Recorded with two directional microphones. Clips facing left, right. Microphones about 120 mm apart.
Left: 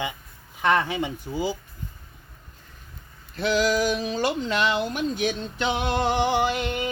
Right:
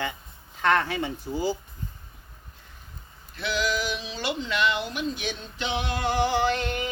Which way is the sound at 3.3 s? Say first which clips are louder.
Left 6 dB; 40° left (ahead or behind).